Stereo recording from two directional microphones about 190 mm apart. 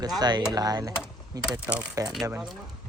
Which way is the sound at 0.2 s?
20° right (ahead or behind).